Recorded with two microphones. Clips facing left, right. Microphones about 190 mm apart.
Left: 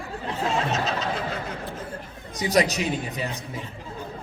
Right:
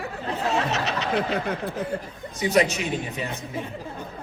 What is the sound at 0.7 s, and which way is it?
Speech, 70° right (ahead or behind).